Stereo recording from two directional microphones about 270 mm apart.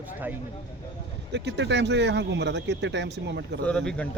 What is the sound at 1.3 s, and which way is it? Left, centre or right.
Speech, right.